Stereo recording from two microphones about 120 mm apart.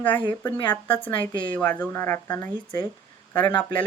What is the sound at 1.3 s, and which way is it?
Speech, 40° left (ahead or behind).